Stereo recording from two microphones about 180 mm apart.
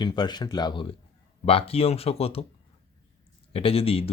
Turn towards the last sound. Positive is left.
turn(degrees=30)  # may be behind; listen again after turning